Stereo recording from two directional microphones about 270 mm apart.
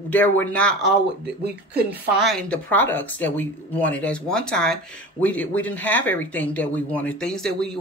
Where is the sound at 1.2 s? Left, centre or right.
Right.